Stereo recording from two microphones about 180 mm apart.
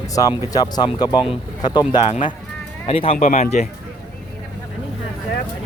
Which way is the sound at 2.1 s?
45° left (ahead or behind).